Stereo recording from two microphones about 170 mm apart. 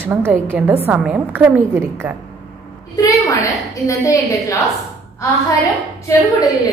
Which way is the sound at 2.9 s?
20° left (ahead or behind).